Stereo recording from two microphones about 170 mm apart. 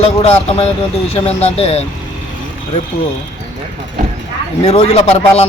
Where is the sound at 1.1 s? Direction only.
40° left (ahead or behind).